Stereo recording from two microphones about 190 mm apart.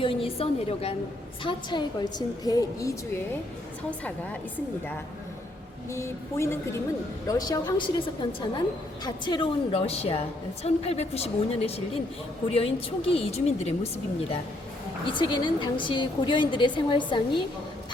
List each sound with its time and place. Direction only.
0.0 s a woman's voice: 30° left (ahead or behind)
5.9 s a woman's voice: 15° left (ahead or behind); by 13.7 s 35° left (ahead or behind)
15.1 s a woman's voice: 25° left (ahead or behind)